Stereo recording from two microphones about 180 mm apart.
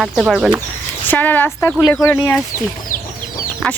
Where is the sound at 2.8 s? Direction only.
50° left (ahead or behind).